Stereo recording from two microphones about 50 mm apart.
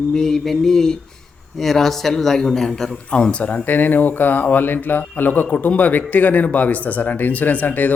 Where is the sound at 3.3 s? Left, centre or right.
Left.